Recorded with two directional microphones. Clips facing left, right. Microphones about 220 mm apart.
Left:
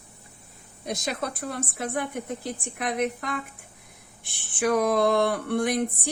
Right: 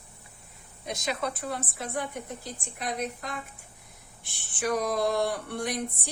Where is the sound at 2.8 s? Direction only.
65° left (ahead or behind).